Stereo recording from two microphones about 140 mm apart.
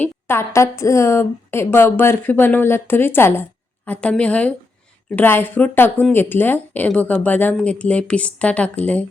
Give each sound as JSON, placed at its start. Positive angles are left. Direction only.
{"t": 0.0, "sound": "speech", "side_deg": 15}